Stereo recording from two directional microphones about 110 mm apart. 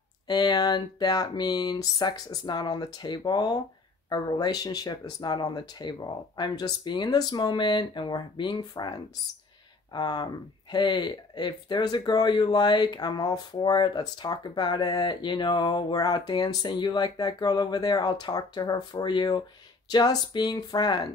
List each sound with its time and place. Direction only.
0.3 s speech: 40° left (ahead or behind)